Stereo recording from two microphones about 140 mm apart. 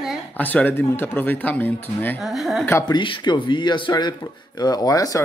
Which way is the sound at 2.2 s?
Centre (ahead or behind).